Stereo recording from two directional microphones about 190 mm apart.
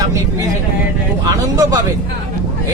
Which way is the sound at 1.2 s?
20° right (ahead or behind).